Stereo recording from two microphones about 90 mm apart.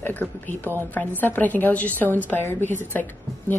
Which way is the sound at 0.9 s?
20° left (ahead or behind).